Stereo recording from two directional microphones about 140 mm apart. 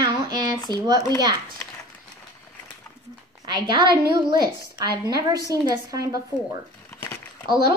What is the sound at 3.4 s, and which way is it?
A woman's voice, 30° right (ahead or behind).